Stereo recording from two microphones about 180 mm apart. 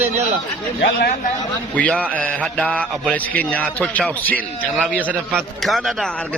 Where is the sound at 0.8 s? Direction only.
60° left (ahead or behind).